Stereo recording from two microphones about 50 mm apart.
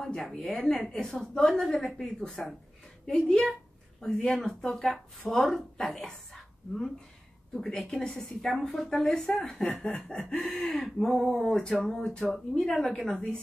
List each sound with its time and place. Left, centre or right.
0.0 s a woman's voice: centre